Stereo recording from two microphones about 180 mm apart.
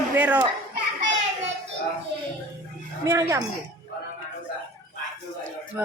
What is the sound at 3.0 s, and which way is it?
Speech, 15° right (ahead or behind).